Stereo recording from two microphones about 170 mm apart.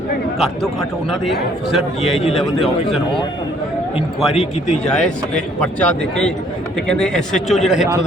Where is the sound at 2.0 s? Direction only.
35° left (ahead or behind).